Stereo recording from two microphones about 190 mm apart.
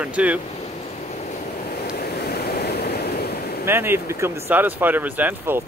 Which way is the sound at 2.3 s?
55° left (ahead or behind).